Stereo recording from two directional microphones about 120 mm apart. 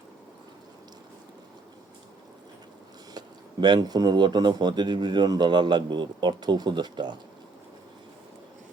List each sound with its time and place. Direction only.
3.2 s speech: 35° right (ahead or behind)